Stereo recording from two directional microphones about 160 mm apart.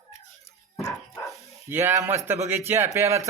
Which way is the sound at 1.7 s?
15° right (ahead or behind).